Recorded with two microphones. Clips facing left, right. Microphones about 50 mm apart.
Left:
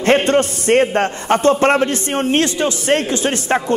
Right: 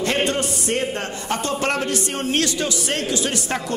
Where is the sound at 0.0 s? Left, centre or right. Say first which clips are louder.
Left 8 dB; left.